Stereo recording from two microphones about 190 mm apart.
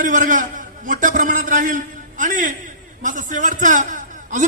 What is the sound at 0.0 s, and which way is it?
A man's voice, 45° right (ahead or behind).